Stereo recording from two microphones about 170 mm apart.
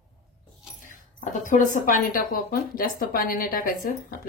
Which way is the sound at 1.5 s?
50° left (ahead or behind).